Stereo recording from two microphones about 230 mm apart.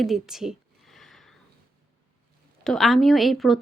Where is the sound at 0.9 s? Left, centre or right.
Centre.